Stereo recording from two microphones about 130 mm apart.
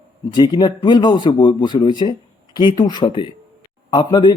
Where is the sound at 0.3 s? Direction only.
35° left (ahead or behind).